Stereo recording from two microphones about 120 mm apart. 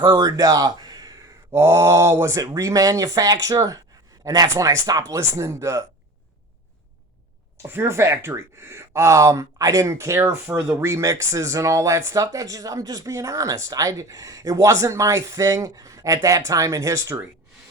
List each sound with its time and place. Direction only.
0.0 s a sound: 30° right (ahead or behind)
1.5 s speech: 25° right (ahead or behind)
7.7 s speech: 20° right (ahead or behind)